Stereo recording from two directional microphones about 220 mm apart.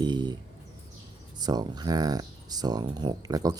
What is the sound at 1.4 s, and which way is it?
Speech, 20° right (ahead or behind).